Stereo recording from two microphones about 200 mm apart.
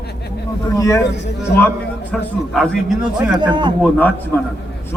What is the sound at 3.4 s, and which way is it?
Speech, 25° right (ahead or behind).